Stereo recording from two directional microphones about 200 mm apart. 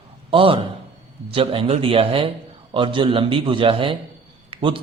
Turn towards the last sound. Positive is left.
turn(degrees=-25)  # may be behind; listen again after turning